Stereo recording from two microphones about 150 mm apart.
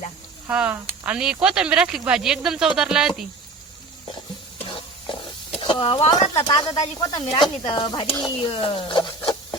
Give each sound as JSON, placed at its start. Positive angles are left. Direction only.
{"t": 0.4, "sound": "speech", "side_deg": -10}
{"t": 4.5, "sound": "stir", "side_deg": 35}
{"t": 5.5, "sound": "speech", "side_deg": 35}
{"t": 6.5, "sound": "speech", "side_deg": 30}